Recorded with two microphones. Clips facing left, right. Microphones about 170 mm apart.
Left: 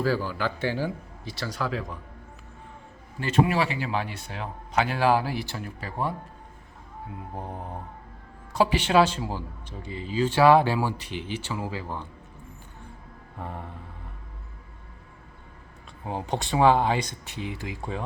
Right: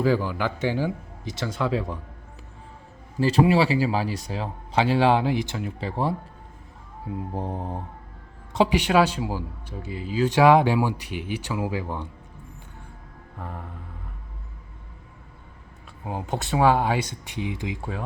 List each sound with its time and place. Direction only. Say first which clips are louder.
0.0 s speech: right 3 dB; 15° right (ahead or behind)
3.2 s speech: right 4 dB; 35° right (ahead or behind)
7.3 s mantra: right 4 dB; 30° right (ahead or behind)
8.5 s a man's voice: right 1 dB; 15° right (ahead or behind)
13.4 s vehicle: left 1 dB; 5° left (ahead or behind)
16.0 s a man's voice: even; 5° right (ahead or behind)